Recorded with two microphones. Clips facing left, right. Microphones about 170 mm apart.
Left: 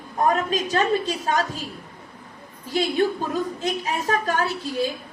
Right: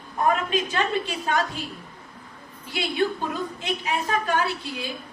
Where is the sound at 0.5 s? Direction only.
40° left (ahead or behind).